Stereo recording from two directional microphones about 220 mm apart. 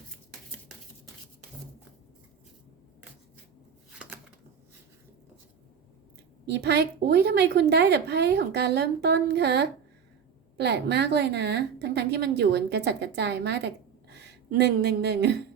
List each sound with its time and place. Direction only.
6.4 s a woman's voice: 50° right (ahead or behind)